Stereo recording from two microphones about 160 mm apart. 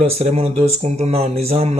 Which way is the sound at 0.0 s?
40° right (ahead or behind).